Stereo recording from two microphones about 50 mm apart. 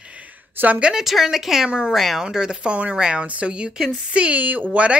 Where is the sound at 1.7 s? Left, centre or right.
Centre.